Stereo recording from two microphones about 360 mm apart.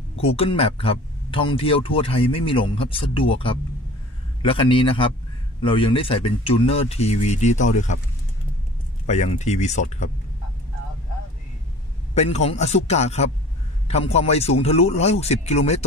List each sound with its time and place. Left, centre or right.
0.2 s speech: centre
9.0 s speech: centre
12.1 s speech: centre